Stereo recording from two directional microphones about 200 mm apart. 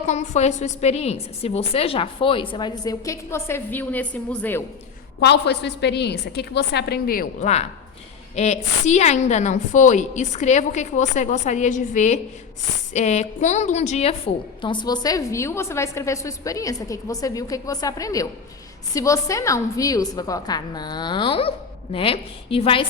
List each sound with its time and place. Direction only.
0.1 s a woman's voice: 35° left (ahead or behind); by 4.6 s 10° left (ahead or behind)
5.2 s a woman's voice: 55° left (ahead or behind); by 22.9 s 25° left (ahead or behind)